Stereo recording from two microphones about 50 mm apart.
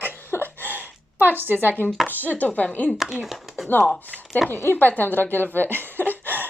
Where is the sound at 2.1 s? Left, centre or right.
Left.